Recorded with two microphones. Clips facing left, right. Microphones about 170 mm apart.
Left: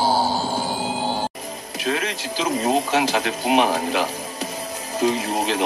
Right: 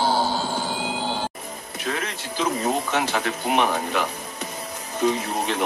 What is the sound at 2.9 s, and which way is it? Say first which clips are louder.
Speech: left 3 dB; 30° left (ahead or behind).